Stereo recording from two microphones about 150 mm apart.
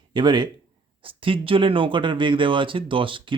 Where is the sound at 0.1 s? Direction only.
30° right (ahead or behind).